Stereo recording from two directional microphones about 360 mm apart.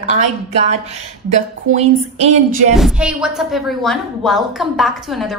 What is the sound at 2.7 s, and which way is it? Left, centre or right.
A woman's voice, centre.